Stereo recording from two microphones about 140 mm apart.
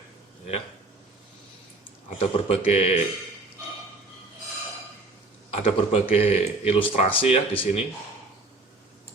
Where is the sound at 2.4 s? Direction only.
45° left (ahead or behind).